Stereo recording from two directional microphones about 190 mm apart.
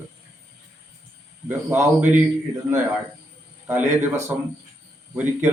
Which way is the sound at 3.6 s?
10° right (ahead or behind).